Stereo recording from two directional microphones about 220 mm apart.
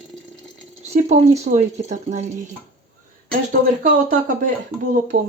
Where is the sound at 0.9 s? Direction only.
30° right (ahead or behind).